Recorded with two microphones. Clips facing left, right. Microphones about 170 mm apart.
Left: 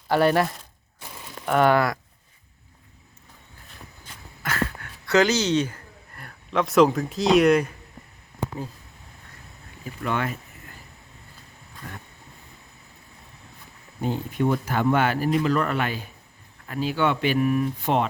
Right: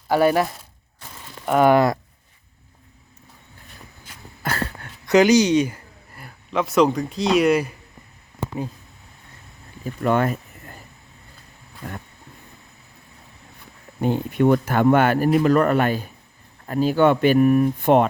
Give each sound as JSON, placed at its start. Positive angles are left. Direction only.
{"t": 0.1, "sound": "speech", "side_deg": -10}
{"t": 4.4, "sound": "dog", "side_deg": -35}
{"t": 5.0, "sound": "speech", "side_deg": -15}
{"t": 9.8, "sound": "a sound", "side_deg": -45}
{"t": 14.0, "sound": "speech", "side_deg": -60}